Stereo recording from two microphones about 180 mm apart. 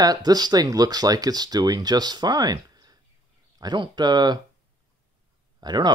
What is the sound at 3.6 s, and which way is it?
Speech, 25° right (ahead or behind).